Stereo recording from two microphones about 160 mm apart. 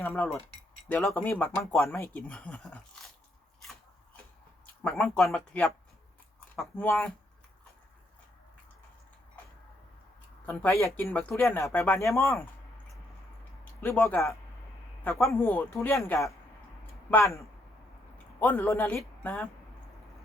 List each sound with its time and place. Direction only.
0.0 s speech: 10° left (ahead or behind)
4.8 s speech: 10° left (ahead or behind)
6.6 s speech: 10° left (ahead or behind)
10.4 s speech: 10° left (ahead or behind)
13.8 s a woman's voice: 10° left (ahead or behind)